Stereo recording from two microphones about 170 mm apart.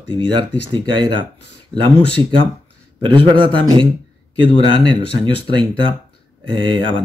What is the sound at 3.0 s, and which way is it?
A man's voice, 30° right (ahead or behind).